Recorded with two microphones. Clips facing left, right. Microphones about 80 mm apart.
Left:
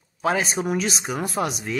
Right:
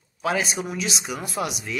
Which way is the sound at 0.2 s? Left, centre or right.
Left.